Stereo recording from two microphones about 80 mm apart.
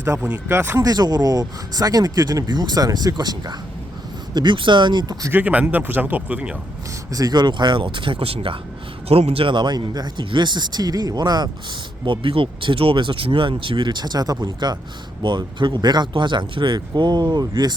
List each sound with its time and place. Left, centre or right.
0.0 s speech: right
0.8 s speech: right
4.4 s speech: right
5.3 s speech: centre
7.1 s speech: right
9.5 s speech: right
12.0 s speech: right
15.2 s speech: right